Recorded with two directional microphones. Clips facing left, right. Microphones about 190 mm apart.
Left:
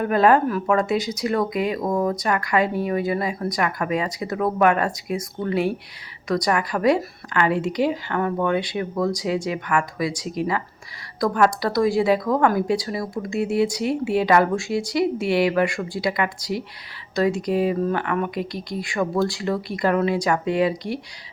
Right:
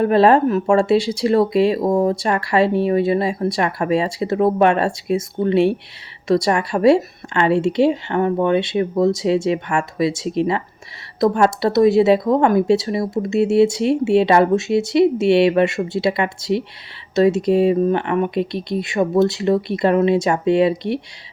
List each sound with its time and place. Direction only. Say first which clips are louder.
0.0 s speech: right 4 dB; 30° right (ahead or behind)